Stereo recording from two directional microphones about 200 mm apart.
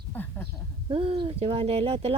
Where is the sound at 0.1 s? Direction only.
10° left (ahead or behind).